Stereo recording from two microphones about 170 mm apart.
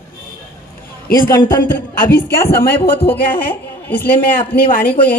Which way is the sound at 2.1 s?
15° left (ahead or behind).